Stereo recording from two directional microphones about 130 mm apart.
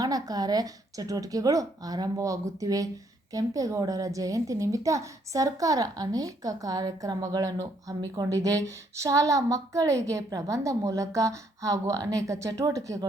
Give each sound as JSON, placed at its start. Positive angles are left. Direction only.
{"t": 0.0, "sound": "a woman's voice", "side_deg": -30}